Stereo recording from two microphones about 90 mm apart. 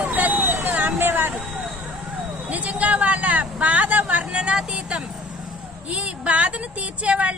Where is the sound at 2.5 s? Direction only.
15° right (ahead or behind).